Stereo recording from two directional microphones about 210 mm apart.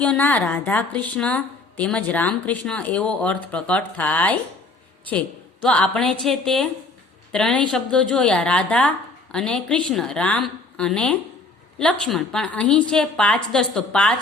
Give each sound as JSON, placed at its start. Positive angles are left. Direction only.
{"t": 0.0, "sound": "a woman's voice", "side_deg": 5}
{"t": 5.6, "sound": "a woman's voice", "side_deg": 5}